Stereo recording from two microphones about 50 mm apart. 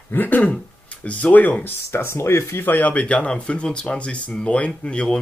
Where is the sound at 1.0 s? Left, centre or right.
Left.